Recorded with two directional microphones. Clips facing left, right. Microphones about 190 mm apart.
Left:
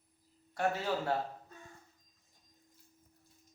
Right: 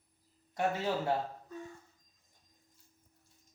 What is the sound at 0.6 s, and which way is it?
Speech, 20° right (ahead or behind).